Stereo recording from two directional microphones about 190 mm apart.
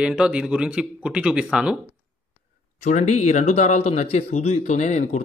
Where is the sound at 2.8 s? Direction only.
40° left (ahead or behind).